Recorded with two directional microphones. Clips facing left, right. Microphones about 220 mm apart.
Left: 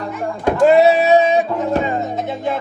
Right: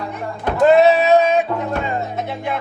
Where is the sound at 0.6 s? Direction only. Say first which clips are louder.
Even; 15° left (ahead or behind).